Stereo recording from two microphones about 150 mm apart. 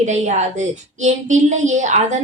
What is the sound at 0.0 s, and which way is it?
A woman's voice, 50° right (ahead or behind).